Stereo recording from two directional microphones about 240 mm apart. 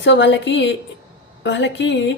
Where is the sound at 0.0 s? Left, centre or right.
Left.